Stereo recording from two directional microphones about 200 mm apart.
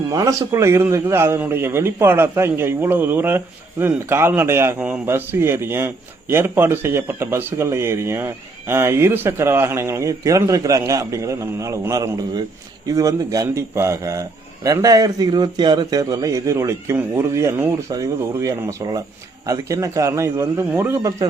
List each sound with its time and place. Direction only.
0.1 s a man's voice: 20° right (ahead or behind)